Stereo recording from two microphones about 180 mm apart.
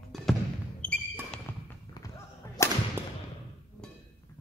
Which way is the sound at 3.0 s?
15° right (ahead or behind).